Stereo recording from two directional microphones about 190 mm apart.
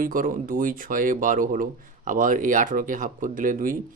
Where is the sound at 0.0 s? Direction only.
45° right (ahead or behind).